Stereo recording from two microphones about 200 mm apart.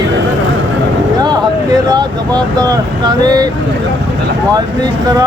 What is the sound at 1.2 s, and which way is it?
Speech, 20° right (ahead or behind).